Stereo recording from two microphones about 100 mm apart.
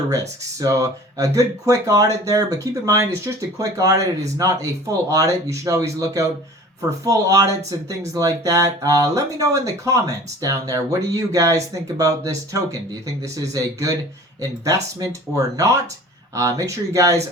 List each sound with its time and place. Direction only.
0.6 s speech: 35° right (ahead or behind)